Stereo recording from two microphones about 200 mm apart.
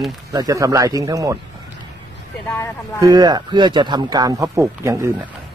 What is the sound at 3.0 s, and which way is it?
Speech, 20° right (ahead or behind).